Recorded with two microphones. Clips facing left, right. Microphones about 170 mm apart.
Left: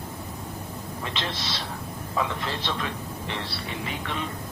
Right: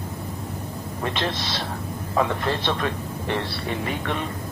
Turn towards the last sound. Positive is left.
turn(degrees=-50)  # may be behind; listen again after turning